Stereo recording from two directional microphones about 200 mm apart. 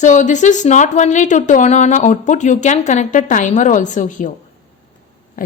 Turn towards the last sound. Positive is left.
turn(degrees=40)  # may be behind; listen again after turning